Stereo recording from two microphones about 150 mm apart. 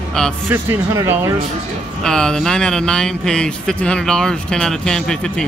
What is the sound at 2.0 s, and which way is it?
Speech, 5° left (ahead or behind).